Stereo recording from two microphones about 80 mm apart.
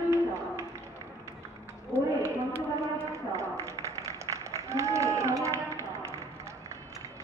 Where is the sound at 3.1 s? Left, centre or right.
Right.